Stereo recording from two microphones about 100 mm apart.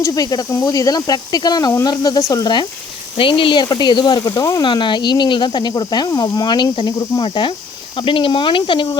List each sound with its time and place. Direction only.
0.0 s speech: 40° left (ahead or behind)
0.5 s speech: 30° left (ahead or behind); by 2.6 s 45° left (ahead or behind)
3.2 s speech: 60° left (ahead or behind); by 4.6 s 35° left (ahead or behind)
4.6 s speech: 50° left (ahead or behind)